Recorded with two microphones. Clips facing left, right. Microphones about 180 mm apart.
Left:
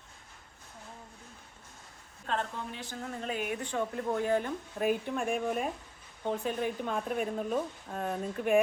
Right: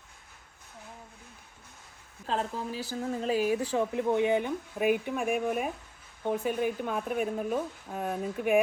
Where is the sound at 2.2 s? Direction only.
35° right (ahead or behind).